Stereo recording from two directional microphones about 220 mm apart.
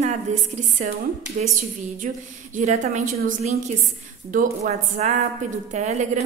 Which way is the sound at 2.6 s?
35° right (ahead or behind).